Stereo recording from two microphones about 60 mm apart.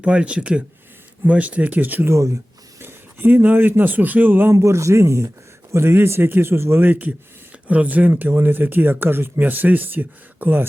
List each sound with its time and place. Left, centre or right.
0.0 s speech: right
2.0 s speech: right
2.8 s speech: right
4.5 s a man's voice: right
8.1 s speech: right